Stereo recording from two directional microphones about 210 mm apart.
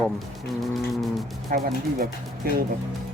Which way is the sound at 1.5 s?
40° right (ahead or behind).